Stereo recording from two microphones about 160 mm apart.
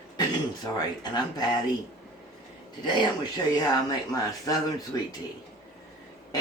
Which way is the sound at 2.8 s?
25° left (ahead or behind).